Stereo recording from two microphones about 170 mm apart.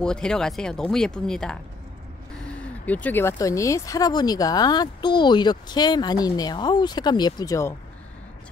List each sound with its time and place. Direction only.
0.0 s speech: 5° left (ahead or behind)